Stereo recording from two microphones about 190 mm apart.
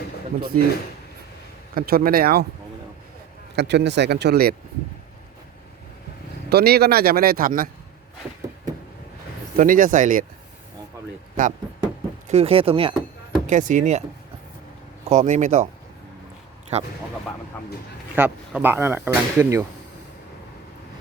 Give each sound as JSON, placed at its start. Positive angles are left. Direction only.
{"t": 0.5, "sound": "speech", "side_deg": -50}
{"t": 1.7, "sound": "speech", "side_deg": -50}
{"t": 3.5, "sound": "speech", "side_deg": -65}
{"t": 6.5, "sound": "speech", "side_deg": -55}
{"t": 9.6, "sound": "speech", "side_deg": -45}
{"t": 11.4, "sound": "speech", "side_deg": -45}
{"t": 12.3, "sound": "speech", "side_deg": -30}
{"t": 13.5, "sound": "speech", "side_deg": -40}
{"t": 15.1, "sound": "speech", "side_deg": -40}
{"t": 16.7, "sound": "speech", "side_deg": -35}
{"t": 18.1, "sound": "speech", "side_deg": -10}